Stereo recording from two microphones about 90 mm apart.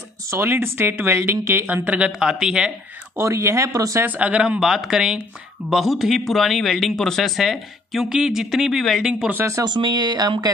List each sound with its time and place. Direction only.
0.3 s speech: 25° right (ahead or behind)
3.2 s speech: 30° right (ahead or behind)
4.0 s speech: 20° right (ahead or behind); by 9.1 s centre (ahead or behind)
9.3 s speech: 30° right (ahead or behind)
9.7 s speech: 55° right (ahead or behind)